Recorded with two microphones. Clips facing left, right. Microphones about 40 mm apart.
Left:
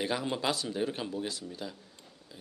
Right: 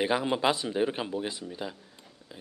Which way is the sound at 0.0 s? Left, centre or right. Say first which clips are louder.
Right 5 dB; right.